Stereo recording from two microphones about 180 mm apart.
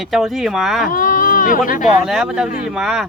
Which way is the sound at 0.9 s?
50° left (ahead or behind).